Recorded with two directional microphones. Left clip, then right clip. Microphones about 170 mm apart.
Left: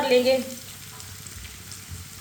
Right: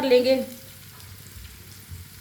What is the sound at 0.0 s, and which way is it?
Frying, 70° right (ahead or behind).